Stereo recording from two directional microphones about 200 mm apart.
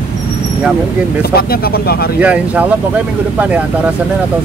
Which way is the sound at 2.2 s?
5° right (ahead or behind).